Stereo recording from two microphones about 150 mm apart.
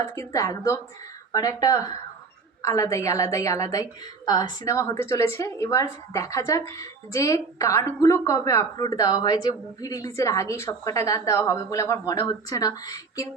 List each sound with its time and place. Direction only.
0.0 s a woman's voice: 20° left (ahead or behind)